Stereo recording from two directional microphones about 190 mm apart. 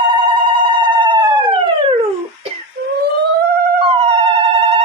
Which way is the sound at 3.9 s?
30° right (ahead or behind).